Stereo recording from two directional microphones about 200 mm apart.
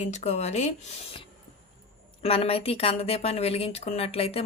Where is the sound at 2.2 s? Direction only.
30° left (ahead or behind).